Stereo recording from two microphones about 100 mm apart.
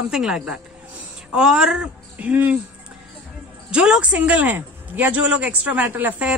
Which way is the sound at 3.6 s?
10° right (ahead or behind).